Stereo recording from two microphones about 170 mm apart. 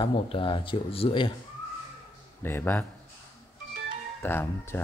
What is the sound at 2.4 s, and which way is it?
Speech, 15° left (ahead or behind).